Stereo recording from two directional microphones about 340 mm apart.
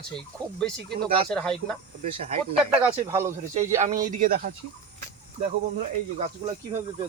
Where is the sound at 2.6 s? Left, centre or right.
Centre.